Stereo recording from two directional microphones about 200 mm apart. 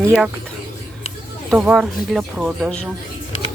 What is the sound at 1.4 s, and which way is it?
Speech, 5° right (ahead or behind).